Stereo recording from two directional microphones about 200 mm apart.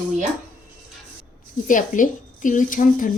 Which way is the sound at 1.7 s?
40° left (ahead or behind).